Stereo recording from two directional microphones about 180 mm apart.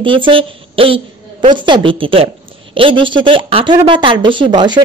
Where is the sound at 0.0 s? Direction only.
30° right (ahead or behind).